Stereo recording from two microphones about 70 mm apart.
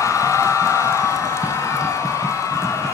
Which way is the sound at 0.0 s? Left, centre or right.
Left.